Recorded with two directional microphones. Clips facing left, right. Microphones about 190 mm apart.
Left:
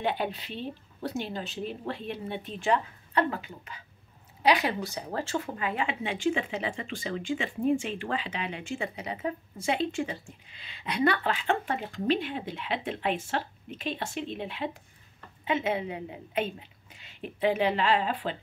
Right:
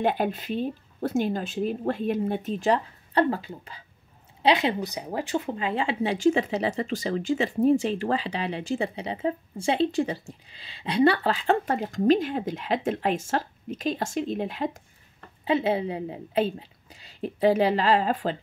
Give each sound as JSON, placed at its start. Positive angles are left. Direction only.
{"t": 0.0, "sound": "speech", "side_deg": -45}